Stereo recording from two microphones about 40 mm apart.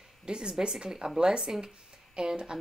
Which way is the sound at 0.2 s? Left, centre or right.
Centre.